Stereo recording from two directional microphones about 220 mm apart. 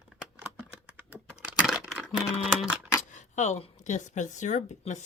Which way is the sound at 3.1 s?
30° left (ahead or behind).